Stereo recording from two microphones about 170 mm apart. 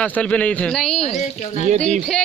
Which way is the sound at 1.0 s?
40° left (ahead or behind).